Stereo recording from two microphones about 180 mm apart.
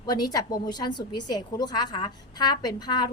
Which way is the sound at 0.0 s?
20° left (ahead or behind).